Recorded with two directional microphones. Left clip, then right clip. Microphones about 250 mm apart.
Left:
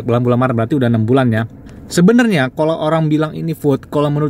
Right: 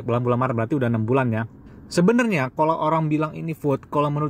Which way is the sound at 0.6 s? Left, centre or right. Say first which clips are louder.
Left 7 dB; right.